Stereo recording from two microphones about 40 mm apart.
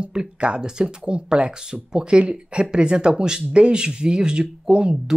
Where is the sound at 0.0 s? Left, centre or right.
Right.